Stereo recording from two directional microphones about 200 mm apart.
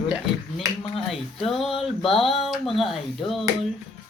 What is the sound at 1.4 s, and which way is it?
A woman's voice, centre (ahead or behind).